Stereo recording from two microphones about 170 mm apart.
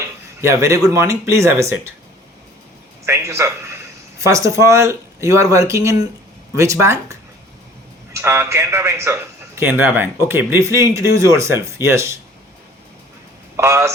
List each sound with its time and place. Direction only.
0.4 s a man's voice: 15° right (ahead or behind)
3.1 s a man's voice: 20° right (ahead or behind)
13.6 s a man's voice: 15° right (ahead or behind)